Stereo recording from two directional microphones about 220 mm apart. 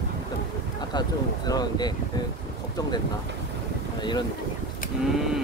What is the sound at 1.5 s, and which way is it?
Speech, 20° left (ahead or behind).